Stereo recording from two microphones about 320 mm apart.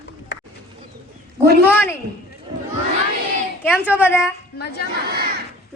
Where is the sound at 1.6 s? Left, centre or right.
Centre.